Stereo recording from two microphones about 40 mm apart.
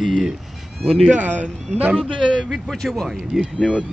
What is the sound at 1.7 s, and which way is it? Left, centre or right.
Speech, left.